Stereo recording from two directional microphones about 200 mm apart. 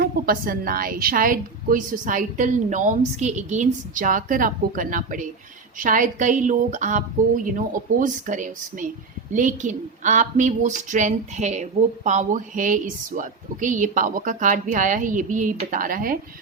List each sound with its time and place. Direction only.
0.0 s a woman's voice: 45° right (ahead or behind)